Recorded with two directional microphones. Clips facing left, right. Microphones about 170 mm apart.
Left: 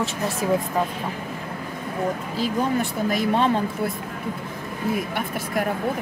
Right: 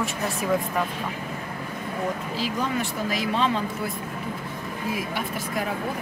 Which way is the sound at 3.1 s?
50° left (ahead or behind).